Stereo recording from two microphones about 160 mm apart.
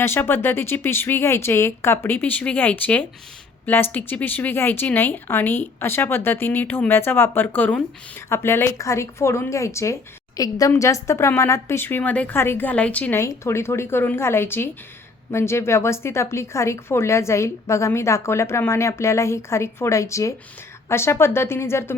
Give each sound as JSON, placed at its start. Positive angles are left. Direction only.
{"t": 0.0, "sound": "speech", "side_deg": 15}